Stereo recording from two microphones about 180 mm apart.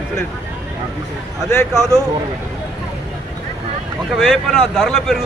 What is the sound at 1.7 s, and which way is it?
Speech, 15° right (ahead or behind).